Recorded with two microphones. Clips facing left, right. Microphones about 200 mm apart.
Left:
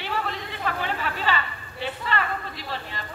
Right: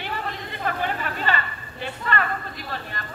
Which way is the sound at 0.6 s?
50° right (ahead or behind).